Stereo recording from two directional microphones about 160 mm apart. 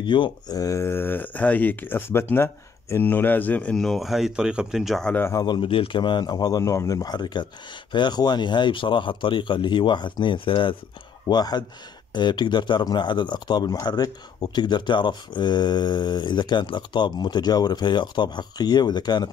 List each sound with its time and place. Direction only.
0.0 s speech: 30° left (ahead or behind); by 5.1 s centre (ahead or behind)
5.1 s speech: 15° left (ahead or behind)